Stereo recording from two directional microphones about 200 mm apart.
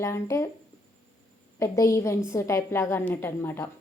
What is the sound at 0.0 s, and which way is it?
Speech, 15° left (ahead or behind).